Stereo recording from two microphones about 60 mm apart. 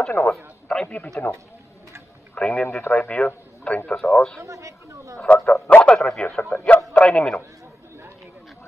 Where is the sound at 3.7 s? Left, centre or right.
Left.